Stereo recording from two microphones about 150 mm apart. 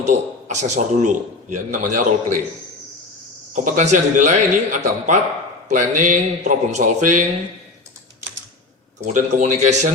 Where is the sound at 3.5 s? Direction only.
55° right (ahead or behind).